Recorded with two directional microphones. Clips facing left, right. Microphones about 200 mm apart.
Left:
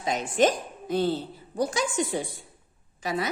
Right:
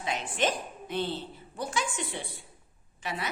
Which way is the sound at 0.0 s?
40° left (ahead or behind).